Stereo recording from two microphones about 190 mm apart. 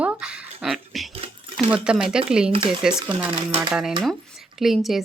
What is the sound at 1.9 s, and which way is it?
A woman's voice, 5° right (ahead or behind).